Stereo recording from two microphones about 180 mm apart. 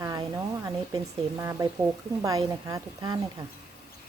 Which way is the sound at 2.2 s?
20° right (ahead or behind).